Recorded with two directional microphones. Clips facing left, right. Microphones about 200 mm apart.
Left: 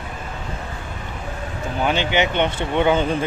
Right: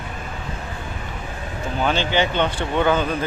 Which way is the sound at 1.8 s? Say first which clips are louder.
Left 1 dB; 15° left (ahead or behind).